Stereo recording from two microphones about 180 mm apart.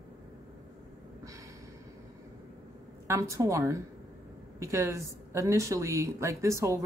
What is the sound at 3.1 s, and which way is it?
Speech, 15° right (ahead or behind).